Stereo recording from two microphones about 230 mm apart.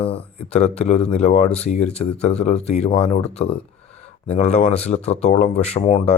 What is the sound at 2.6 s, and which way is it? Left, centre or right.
Speech, left.